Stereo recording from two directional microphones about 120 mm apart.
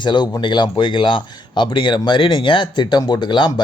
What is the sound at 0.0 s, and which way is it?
Speech, 40° left (ahead or behind).